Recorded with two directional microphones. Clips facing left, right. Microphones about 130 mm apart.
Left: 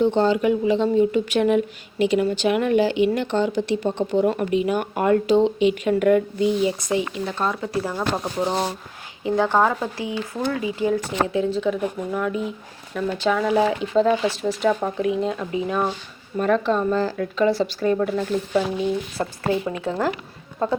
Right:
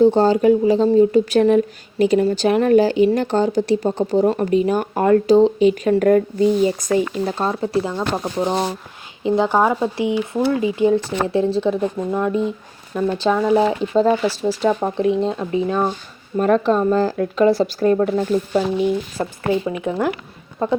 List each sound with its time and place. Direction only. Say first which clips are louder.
0.0 s a woman's voice: right 5 dB; 40° right (ahead or behind)
8.1 s a woman's voice: right 4 dB; 15° right (ahead or behind)
16.4 s a woman's voice: right 4 dB; 40° right (ahead or behind)
18.5 s speech: right 2 dB; 15° right (ahead or behind)